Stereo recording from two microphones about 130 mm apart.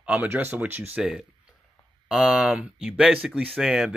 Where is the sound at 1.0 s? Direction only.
5° right (ahead or behind).